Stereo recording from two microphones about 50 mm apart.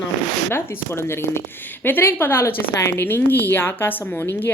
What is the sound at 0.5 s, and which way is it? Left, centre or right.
Speech, left.